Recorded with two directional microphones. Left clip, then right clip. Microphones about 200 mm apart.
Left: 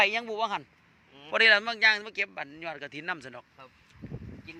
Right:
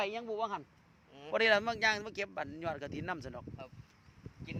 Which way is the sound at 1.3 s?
15° right (ahead or behind).